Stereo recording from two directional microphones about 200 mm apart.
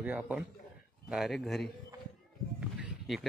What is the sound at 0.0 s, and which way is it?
A man's voice, 10° right (ahead or behind).